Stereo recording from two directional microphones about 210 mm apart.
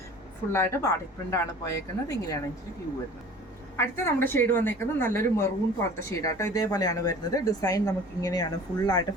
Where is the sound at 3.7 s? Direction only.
10° left (ahead or behind).